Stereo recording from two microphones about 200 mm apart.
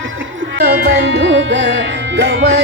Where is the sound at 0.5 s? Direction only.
50° right (ahead or behind).